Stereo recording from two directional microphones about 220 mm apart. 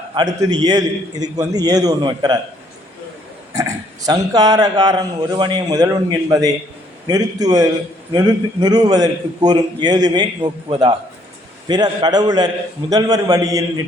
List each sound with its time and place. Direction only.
0.1 s a man's voice: 20° right (ahead or behind)
3.5 s a man's voice: 15° right (ahead or behind)